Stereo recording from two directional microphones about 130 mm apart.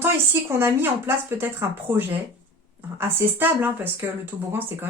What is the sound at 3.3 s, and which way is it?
Speech, 15° right (ahead or behind).